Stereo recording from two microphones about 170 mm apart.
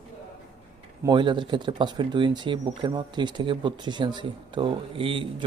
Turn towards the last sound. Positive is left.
turn(degrees=-30)  # may be behind; listen again after turning